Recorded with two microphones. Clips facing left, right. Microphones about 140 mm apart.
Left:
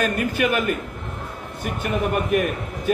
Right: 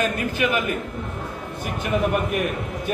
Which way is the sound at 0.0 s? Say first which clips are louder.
Left 1 dB; 45° left (ahead or behind).